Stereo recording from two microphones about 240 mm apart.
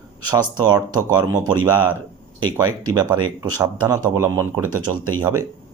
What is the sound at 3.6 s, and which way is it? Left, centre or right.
Speech, centre.